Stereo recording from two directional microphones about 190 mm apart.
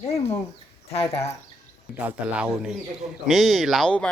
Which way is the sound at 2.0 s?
5° right (ahead or behind).